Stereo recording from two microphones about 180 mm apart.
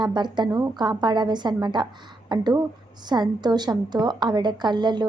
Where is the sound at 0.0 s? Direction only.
25° right (ahead or behind).